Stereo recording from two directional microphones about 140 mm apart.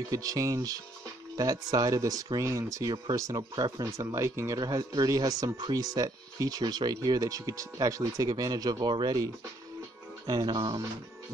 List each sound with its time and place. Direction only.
0.1 s speech: 25° right (ahead or behind)